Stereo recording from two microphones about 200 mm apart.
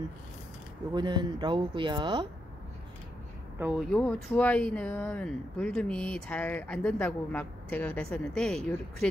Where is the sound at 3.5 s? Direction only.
10° right (ahead or behind).